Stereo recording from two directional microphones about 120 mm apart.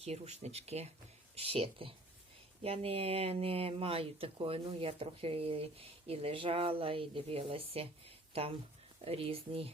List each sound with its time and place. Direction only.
0.0 s speech: 60° right (ahead or behind)